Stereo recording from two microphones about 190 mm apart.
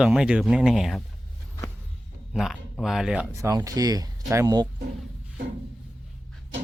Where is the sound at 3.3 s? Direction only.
15° right (ahead or behind).